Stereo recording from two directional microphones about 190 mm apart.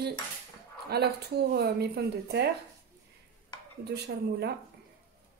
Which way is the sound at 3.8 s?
60° right (ahead or behind).